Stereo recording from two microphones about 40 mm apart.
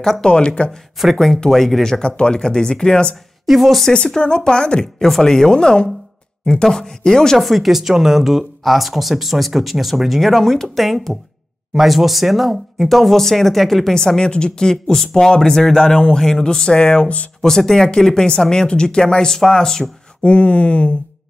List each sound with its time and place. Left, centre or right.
0.2 s speech: left
0.7 s speech: centre
2.0 s speech: left
3.4 s speech: centre
4.5 s speech: left
6.6 s speech: centre
7.3 s speech: centre
13.9 s speech: centre
20.2 s speech: left